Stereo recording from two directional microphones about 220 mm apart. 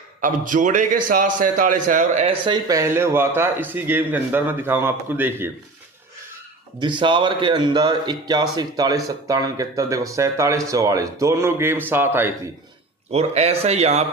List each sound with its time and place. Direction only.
0.2 s a man's voice: 35° right (ahead or behind); by 5.5 s 10° right (ahead or behind)
6.7 s a man's voice: 20° right (ahead or behind)
13.1 s speech: 30° right (ahead or behind)